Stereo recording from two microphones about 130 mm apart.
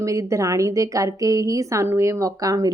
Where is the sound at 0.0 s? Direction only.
25° right (ahead or behind).